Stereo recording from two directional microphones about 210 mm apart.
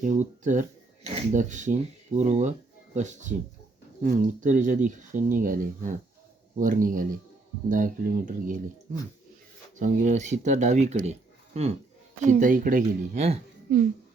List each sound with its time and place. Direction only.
0.0 s speech: 35° right (ahead or behind)
9.7 s speech: 35° right (ahead or behind)